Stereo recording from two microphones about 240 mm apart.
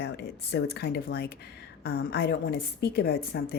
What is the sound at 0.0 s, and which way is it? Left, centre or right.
A woman's voice, left.